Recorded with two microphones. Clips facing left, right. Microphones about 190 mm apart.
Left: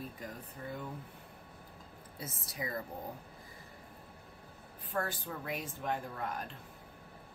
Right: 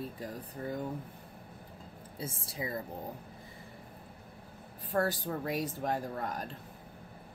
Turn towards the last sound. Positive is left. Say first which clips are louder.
# right 3 dB
turn(degrees=-40)  # may be behind; listen again after turning